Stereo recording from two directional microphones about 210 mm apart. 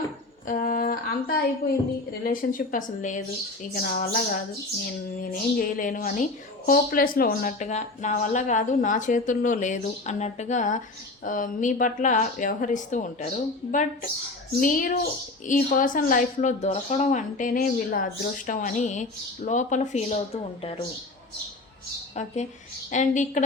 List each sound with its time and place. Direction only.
0.4 s a sound: 40° left (ahead or behind)
2.2 s speech: 40° left (ahead or behind)
22.9 s speech: 35° left (ahead or behind)